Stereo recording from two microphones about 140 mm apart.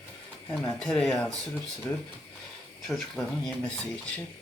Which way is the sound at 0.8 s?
5° left (ahead or behind).